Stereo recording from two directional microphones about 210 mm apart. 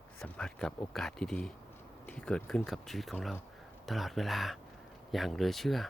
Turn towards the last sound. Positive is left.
turn(degrees=0)  # may be behind; listen again after turning